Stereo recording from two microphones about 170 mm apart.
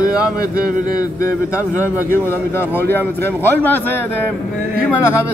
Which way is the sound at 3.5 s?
10° left (ahead or behind).